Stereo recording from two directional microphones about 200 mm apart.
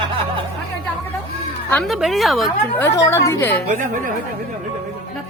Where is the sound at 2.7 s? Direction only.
15° left (ahead or behind).